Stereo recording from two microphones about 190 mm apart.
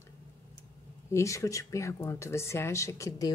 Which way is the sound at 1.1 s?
15° left (ahead or behind).